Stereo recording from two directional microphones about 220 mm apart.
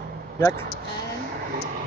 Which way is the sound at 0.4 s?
15° left (ahead or behind).